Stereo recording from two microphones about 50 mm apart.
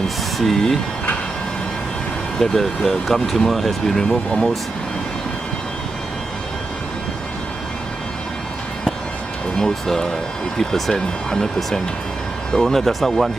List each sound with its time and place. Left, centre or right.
0.4 s speech: centre
2.3 s speech: centre
9.6 s speech: centre